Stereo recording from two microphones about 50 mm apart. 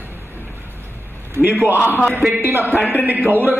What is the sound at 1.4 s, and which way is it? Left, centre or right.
A man's voice, right.